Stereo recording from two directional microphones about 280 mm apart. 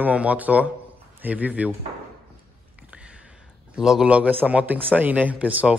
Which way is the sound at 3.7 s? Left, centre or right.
Centre.